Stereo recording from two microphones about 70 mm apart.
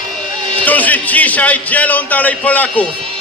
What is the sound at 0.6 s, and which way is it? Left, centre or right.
A man's voice, left.